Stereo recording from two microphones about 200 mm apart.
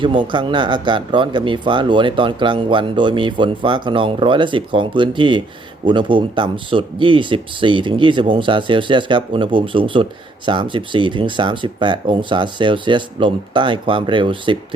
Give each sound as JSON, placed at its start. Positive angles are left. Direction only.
{"t": 0.0, "sound": "speech", "side_deg": -25}